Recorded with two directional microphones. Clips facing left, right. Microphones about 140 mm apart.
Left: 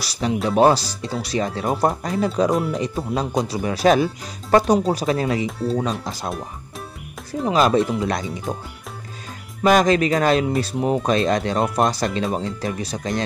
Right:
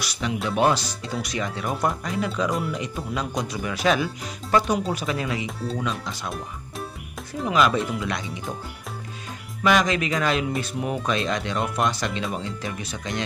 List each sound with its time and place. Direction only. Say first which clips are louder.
0.0 s speech: left 5 dB; 35° left (ahead or behind)
7.4 s speech: left 4 dB; 35° left (ahead or behind)
9.6 s speech: left 5 dB; 40° left (ahead or behind)